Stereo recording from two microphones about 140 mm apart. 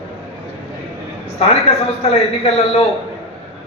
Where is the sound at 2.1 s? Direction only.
45° left (ahead or behind).